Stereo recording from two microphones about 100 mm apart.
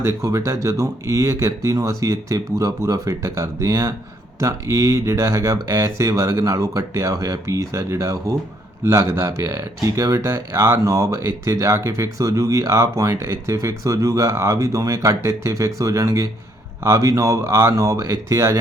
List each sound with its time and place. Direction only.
0.0 s speech: 30° right (ahead or behind)